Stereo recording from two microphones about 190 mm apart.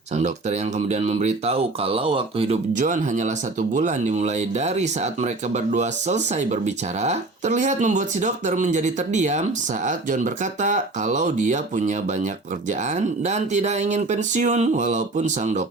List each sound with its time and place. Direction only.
0.2 s speech: 35° right (ahead or behind)